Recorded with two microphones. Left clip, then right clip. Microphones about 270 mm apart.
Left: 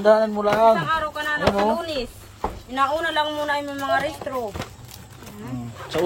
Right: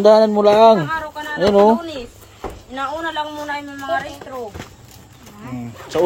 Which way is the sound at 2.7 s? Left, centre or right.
Left.